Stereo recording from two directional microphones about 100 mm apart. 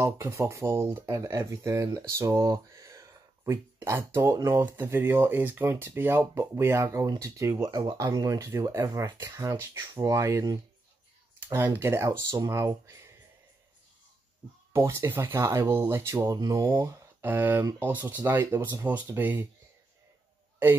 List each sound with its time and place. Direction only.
0.0 s speech: 25° right (ahead or behind)
11.8 s speech: 25° right (ahead or behind)
14.7 s speech: 25° right (ahead or behind)
16.3 s speech: 40° right (ahead or behind)
17.2 s speech: 20° right (ahead or behind)